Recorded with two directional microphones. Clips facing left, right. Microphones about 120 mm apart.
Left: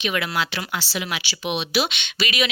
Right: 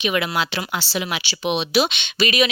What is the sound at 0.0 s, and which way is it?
Speech, 20° right (ahead or behind).